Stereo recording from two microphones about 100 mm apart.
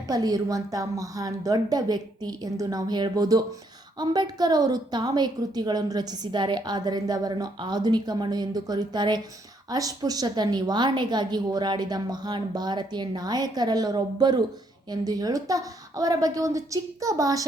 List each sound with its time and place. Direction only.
0.1 s a woman's voice: 40° right (ahead or behind)